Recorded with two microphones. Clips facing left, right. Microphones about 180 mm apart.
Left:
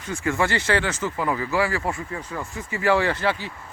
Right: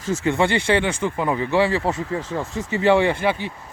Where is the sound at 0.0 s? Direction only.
90° right.